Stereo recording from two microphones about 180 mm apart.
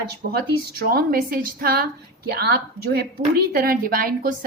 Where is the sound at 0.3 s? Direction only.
60° right (ahead or behind).